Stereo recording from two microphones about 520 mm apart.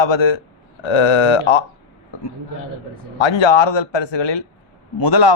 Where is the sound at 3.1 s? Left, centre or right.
Left.